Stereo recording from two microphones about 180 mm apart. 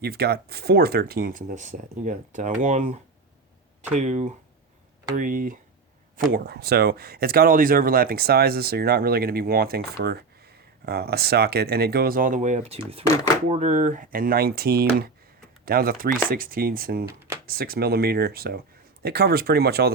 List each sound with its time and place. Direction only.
0.0 s speech: 60° right (ahead or behind)